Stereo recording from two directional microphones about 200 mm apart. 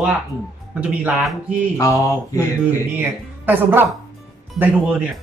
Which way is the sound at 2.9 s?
10° right (ahead or behind).